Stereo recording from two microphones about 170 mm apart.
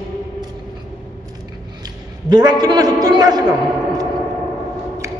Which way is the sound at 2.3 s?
25° right (ahead or behind).